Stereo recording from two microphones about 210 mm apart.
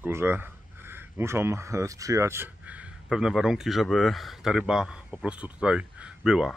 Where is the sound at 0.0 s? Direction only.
10° right (ahead or behind).